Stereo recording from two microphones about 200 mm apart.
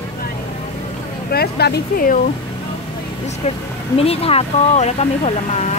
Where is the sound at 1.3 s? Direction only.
55° left (ahead or behind).